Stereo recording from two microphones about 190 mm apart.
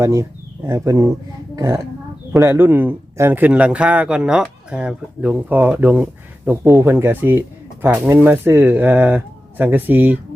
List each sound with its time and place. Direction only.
0.0 s speech: 15° right (ahead or behind)